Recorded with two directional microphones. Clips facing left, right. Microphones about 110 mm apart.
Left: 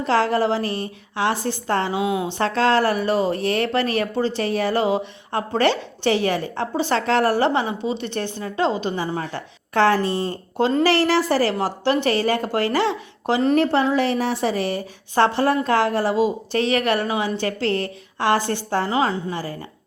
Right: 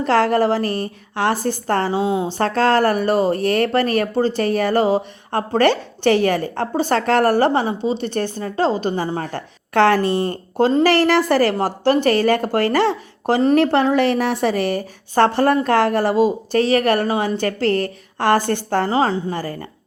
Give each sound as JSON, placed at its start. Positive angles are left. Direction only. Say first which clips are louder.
{"t": 0.0, "sound": "speech", "louder": "right 3 dB", "side_deg": -55}
{"t": 2.4, "sound": "speech", "louder": "right 2 dB", "side_deg": -45}
{"t": 9.8, "sound": "speech", "louder": "right 3 dB", "side_deg": -65}
{"t": 10.8, "sound": "speech", "louder": "right 3 dB", "side_deg": -50}
{"t": 11.5, "sound": "speech", "louder": "right 4 dB", "side_deg": -45}
{"t": 13.6, "sound": "speech", "louder": "right 3 dB", "side_deg": -60}
{"t": 18.9, "sound": "a woman's voice", "louder": "right 3 dB", "side_deg": -35}
{"t": 19.3, "sound": "speech", "louder": "right 3 dB", "side_deg": -45}